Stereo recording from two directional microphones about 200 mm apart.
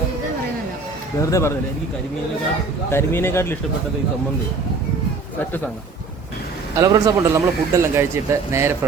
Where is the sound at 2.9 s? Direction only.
10° left (ahead or behind).